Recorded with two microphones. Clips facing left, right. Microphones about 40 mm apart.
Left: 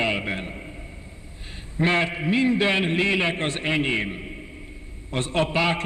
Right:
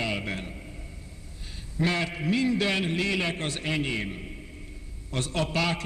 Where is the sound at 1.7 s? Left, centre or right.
Left.